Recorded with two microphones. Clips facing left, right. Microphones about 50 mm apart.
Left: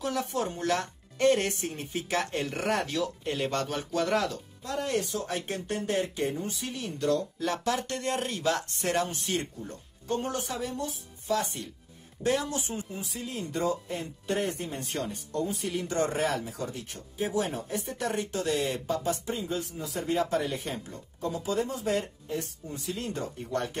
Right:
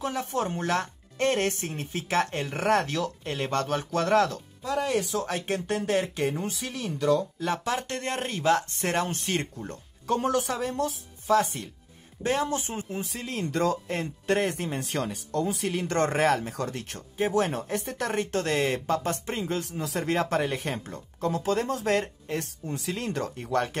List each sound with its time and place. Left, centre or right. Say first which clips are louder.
0.0 s speech: right 1 dB; right
5.1 s speech: right 4 dB; right
7.4 s speech: right 1 dB; right
10.6 s speech: right 5 dB; right
12.2 s speech: right 2 dB; right
19.6 s speech: right 4 dB; right